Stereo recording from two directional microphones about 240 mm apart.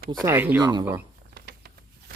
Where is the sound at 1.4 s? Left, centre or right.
Right.